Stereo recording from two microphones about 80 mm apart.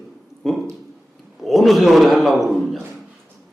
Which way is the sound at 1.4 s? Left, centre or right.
Centre.